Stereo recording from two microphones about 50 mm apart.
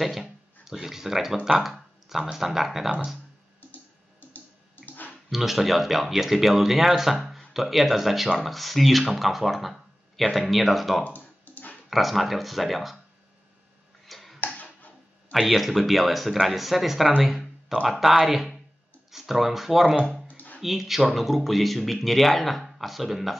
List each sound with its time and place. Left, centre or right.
0.0 s speech: centre
1.6 s a sound: centre
2.3 s speech: centre
4.2 s bathtub: left
5.3 s speech: centre
11.1 s music: left
11.9 s speech: centre
14.0 s tick-tock: centre
14.4 s a sound: left
15.3 s speech: centre
17.2 s a sound: centre
17.8 s speech: centre
20.2 s a sound: left
20.6 s speech: centre